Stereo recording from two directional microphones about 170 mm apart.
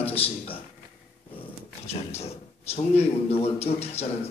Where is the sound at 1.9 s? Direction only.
40° left (ahead or behind).